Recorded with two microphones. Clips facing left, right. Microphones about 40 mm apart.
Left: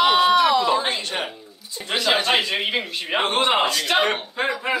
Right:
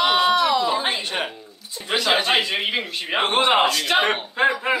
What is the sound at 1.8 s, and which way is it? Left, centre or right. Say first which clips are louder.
Speech: even; centre.